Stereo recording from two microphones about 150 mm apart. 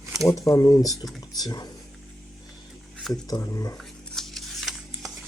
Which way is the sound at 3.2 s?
25° left (ahead or behind).